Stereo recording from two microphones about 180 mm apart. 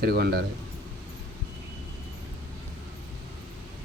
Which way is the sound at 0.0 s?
60° right (ahead or behind).